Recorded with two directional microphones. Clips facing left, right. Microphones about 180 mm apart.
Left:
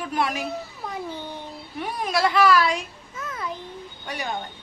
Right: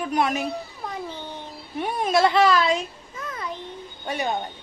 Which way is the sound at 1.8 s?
25° right (ahead or behind).